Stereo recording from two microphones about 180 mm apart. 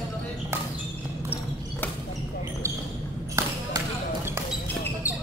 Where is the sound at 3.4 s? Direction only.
15° right (ahead or behind).